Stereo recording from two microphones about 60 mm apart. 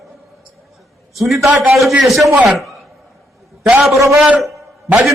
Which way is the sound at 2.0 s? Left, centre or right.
Centre.